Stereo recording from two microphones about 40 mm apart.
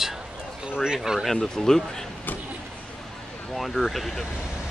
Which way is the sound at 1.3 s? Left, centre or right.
Centre.